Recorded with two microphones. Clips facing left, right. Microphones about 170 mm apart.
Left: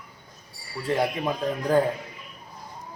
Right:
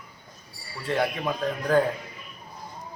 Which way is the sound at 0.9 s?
10° left (ahead or behind).